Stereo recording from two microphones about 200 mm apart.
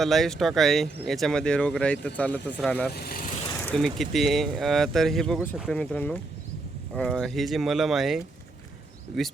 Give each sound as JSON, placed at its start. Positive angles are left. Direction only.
{"t": 0.0, "sound": "speech", "side_deg": 0}
{"t": 2.9, "sound": "speech", "side_deg": 50}
{"t": 3.6, "sound": "speech", "side_deg": 5}